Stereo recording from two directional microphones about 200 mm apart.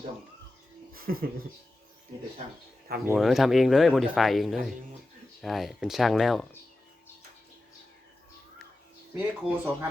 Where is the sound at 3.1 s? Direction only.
Centre (ahead or behind).